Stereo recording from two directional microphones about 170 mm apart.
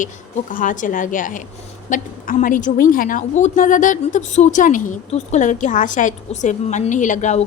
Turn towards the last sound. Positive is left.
turn(degrees=45)  # may be behind; listen again after turning